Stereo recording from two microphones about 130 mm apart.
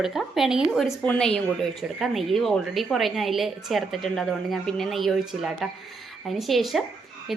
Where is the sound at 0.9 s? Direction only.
15° left (ahead or behind).